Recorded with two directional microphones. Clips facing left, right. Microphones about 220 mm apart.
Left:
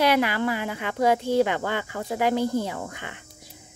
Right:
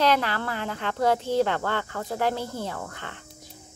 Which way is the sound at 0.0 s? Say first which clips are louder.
Left 2 dB; 10° left (ahead or behind).